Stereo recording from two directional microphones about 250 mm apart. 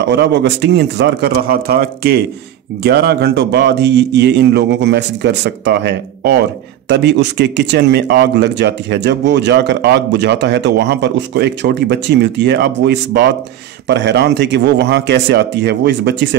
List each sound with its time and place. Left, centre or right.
0.0 s speech: right